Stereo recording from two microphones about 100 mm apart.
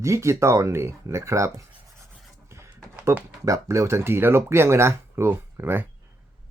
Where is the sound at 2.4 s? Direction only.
30° right (ahead or behind).